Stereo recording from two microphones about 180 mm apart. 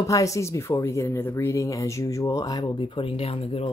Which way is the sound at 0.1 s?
20° left (ahead or behind).